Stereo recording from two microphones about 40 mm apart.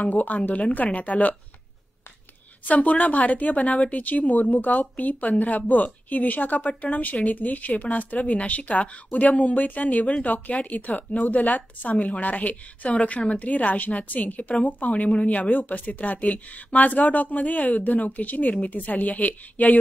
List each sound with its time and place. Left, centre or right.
0.0 s a woman's voice: left
2.6 s a woman's voice: left